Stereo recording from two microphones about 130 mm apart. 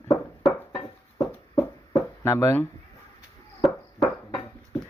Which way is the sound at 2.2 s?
20° left (ahead or behind).